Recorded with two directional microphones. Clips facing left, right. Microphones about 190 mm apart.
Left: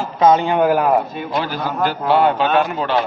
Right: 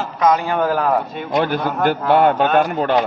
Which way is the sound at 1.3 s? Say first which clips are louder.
Right 4 dB; 55° right (ahead or behind).